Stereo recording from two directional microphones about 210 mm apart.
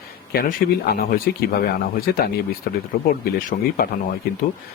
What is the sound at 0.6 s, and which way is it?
Speech, 40° left (ahead or behind).